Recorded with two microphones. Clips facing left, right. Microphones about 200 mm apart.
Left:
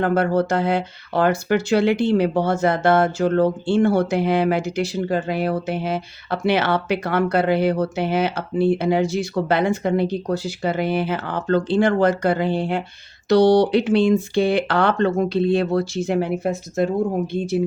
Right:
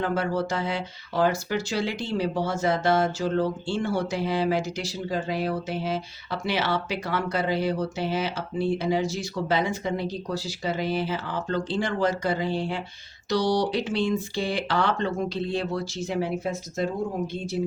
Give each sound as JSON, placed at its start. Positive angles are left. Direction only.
{"t": 0.0, "sound": "speech", "side_deg": 60}